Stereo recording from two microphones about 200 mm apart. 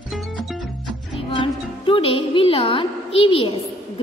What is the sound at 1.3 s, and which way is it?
Music, 25° left (ahead or behind).